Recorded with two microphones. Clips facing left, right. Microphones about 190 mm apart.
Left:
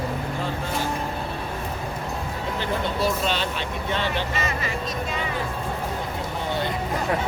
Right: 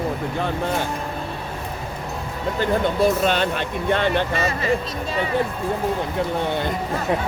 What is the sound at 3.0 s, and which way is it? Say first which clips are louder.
Speech: right 6 dB; 55° right (ahead or behind).